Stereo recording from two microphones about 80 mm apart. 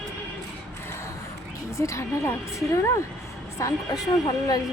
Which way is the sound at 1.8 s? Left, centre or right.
Left.